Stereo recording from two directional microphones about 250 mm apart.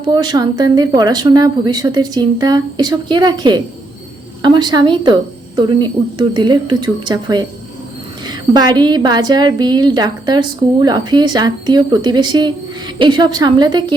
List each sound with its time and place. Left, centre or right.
0.0 s a woman's voice: centre